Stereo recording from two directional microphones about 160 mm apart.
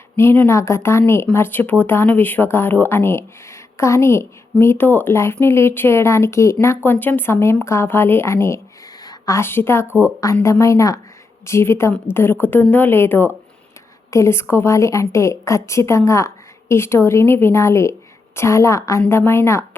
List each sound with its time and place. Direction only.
0.2 s a woman's voice: 15° left (ahead or behind)